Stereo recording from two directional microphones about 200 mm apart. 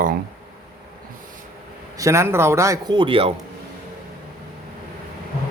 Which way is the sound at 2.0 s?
15° right (ahead or behind).